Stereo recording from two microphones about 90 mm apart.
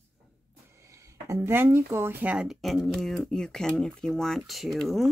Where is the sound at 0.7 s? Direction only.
35° right (ahead or behind).